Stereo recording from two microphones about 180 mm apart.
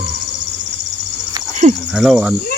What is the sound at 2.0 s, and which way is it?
Speech, 5° right (ahead or behind).